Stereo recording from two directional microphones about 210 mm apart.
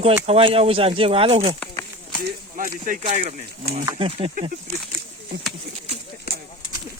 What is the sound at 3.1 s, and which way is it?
Speech, 35° right (ahead or behind).